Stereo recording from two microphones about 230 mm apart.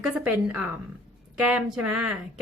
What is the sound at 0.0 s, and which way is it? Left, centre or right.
Speech, centre.